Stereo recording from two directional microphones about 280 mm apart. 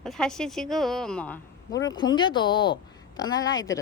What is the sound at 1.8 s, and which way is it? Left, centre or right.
A woman's voice, centre.